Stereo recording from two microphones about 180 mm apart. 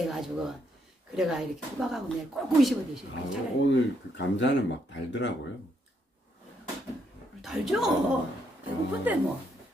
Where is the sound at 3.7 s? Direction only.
80° left.